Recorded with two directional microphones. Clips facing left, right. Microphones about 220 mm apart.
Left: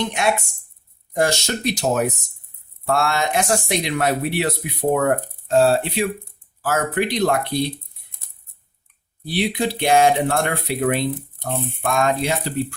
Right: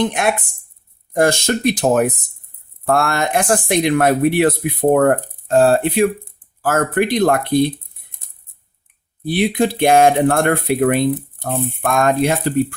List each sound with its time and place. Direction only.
0.0 s speech: 50° right (ahead or behind)
9.2 s speech: 50° right (ahead or behind)